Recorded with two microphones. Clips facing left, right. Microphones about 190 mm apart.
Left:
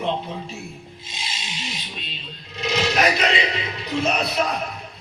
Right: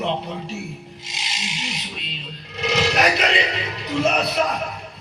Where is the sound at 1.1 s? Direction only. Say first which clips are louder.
Right 2 dB; 85° right.